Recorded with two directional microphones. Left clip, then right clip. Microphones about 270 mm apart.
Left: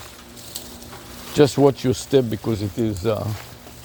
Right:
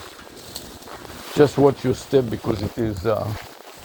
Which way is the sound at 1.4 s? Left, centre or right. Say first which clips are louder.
Even; left.